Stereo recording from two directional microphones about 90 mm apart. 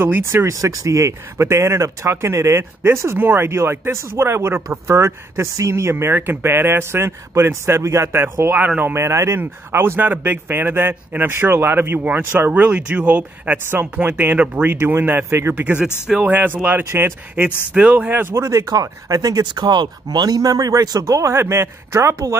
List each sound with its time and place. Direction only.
0.0 s speech: 25° right (ahead or behind)
8.9 s speech: 30° right (ahead or behind)
17.7 s speech: 15° right (ahead or behind); by 19.4 s 40° right (ahead or behind)
19.4 s speech: 55° right (ahead or behind); by 22.3 s 30° right (ahead or behind)